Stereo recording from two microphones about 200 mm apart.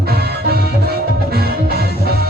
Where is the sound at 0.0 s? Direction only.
50° right (ahead or behind).